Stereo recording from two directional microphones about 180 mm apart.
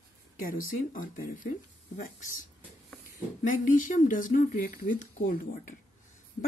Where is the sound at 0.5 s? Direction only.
50° left (ahead or behind).